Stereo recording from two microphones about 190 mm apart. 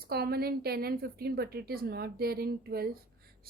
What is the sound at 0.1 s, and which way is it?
A woman's voice, 55° right (ahead or behind).